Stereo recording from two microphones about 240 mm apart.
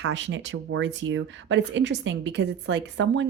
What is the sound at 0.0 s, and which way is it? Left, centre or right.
Speech, right.